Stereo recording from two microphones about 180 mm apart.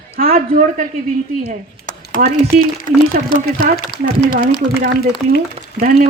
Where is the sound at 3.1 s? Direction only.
45° right (ahead or behind).